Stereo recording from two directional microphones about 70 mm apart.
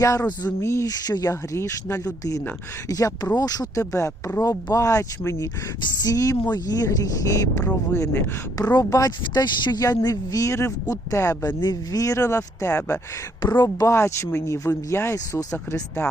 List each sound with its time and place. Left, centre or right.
0.0 s speech: left
0.9 s speech: left
1.5 s speech: left
2.9 s speech: left
3.8 s speech: left
5.8 s speech: left
11.4 s speech: left
13.4 s speech: left
13.8 s speech: left
15.1 s speech: left